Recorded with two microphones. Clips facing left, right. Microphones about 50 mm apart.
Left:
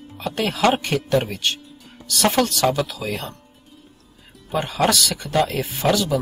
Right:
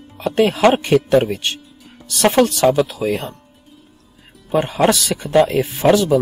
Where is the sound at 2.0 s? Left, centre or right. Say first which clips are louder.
Right 5 dB; right.